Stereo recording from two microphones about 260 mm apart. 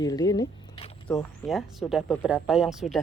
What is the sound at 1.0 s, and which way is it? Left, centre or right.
Speech, centre.